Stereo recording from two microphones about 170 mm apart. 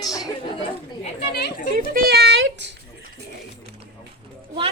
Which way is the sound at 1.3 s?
65° left (ahead or behind).